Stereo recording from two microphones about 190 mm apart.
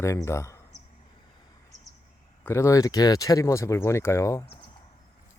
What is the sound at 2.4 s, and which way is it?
Speech, 15° left (ahead or behind).